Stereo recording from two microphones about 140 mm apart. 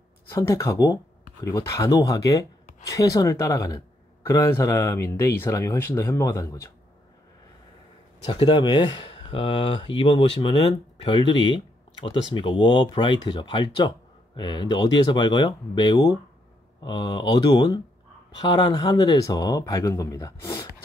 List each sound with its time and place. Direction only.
0.3 s speech: 25° left (ahead or behind)
8.3 s speech: 35° left (ahead or behind)